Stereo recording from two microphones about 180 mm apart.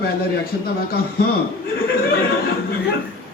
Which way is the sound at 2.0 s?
55° left (ahead or behind).